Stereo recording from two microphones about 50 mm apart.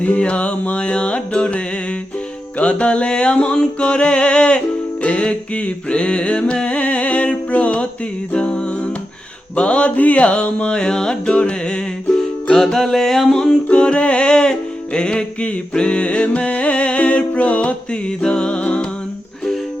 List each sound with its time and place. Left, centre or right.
0.0 s music: left
12.1 s music: centre; by 18.9 s left